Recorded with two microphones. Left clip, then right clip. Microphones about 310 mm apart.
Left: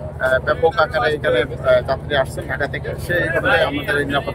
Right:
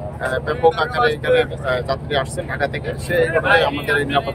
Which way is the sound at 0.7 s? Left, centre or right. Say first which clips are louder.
Left 1 dB; centre.